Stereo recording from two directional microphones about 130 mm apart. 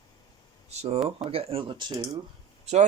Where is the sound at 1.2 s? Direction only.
45° right (ahead or behind).